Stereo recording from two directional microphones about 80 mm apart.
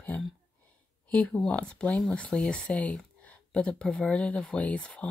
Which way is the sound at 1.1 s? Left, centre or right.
Centre.